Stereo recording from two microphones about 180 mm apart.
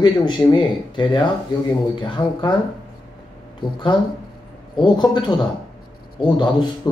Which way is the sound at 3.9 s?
25° left (ahead or behind).